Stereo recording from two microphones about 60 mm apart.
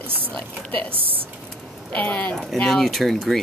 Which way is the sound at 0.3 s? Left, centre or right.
Left.